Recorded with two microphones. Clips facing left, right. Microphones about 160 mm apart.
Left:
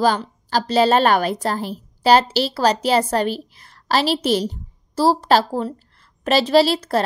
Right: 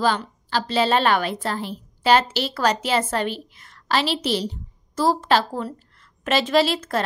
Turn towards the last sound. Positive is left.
turn(degrees=35)  # may be behind; listen again after turning